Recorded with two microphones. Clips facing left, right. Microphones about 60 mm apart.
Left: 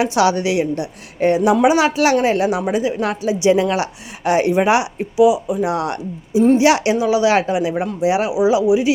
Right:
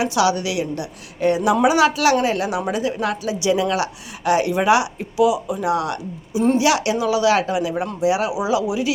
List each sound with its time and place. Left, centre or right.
0.0 s a woman's voice: left; by 5.7 s centre
5.7 s a woman's voice: left